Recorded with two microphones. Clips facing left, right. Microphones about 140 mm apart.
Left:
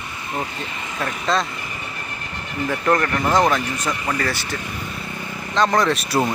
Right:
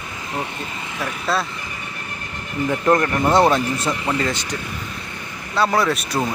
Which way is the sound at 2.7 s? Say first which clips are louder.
Right 2 dB; 20° right (ahead or behind).